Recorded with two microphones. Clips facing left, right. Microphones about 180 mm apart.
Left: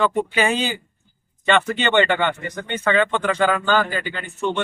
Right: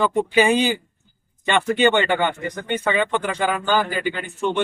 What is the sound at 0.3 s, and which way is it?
Speech, 15° right (ahead or behind).